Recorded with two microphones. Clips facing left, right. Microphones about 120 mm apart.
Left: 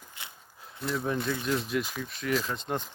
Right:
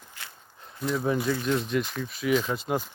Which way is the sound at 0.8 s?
Centre (ahead or behind).